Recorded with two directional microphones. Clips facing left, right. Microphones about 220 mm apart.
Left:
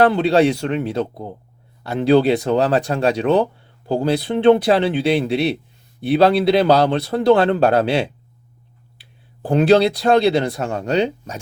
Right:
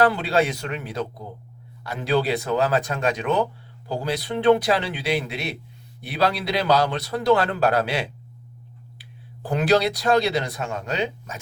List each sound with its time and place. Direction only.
0.0 s speech: 30° left (ahead or behind)
9.5 s speech: 25° left (ahead or behind)